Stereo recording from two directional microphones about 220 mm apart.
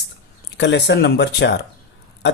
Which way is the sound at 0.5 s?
55° left (ahead or behind).